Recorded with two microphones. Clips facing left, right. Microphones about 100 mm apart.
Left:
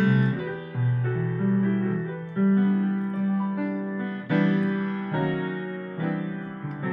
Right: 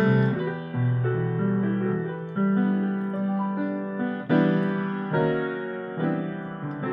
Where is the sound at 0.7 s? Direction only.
40° right (ahead or behind).